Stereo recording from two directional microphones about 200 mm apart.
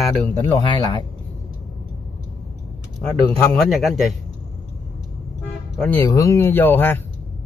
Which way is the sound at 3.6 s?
Centre (ahead or behind).